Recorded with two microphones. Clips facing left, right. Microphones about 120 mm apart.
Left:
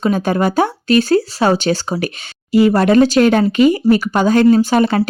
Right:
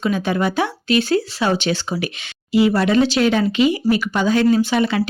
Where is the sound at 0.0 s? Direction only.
45° left (ahead or behind).